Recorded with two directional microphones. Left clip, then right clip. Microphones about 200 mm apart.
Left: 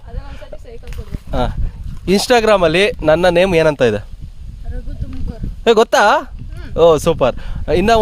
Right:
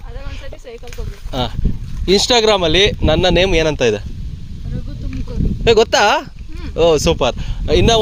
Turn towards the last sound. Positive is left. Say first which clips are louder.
# left 1 dB
turn(degrees=35)  # may be behind; listen again after turning